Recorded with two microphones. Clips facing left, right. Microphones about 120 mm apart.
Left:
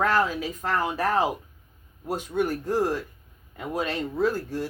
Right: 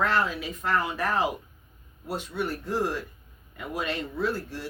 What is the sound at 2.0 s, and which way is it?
Speech, 45° left (ahead or behind).